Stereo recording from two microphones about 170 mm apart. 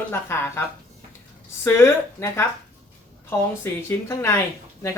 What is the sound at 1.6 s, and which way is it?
A woman's voice, 15° left (ahead or behind).